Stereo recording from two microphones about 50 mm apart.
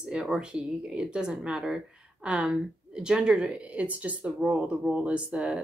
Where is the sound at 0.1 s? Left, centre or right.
Centre.